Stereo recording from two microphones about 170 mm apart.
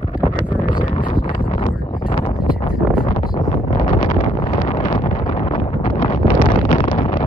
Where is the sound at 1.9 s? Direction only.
25° left (ahead or behind).